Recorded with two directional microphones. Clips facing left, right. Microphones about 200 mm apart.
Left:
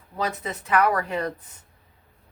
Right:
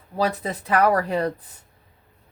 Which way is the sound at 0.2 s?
35° right (ahead or behind).